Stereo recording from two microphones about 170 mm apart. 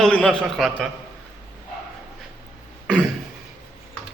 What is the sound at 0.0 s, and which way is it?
Speech, 5° left (ahead or behind).